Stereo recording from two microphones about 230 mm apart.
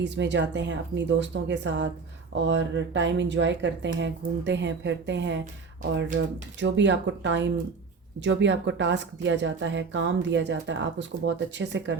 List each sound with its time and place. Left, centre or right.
0.0 s speech: right